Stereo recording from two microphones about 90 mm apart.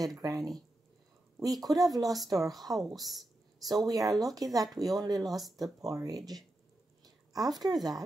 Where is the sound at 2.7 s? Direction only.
40° right (ahead or behind).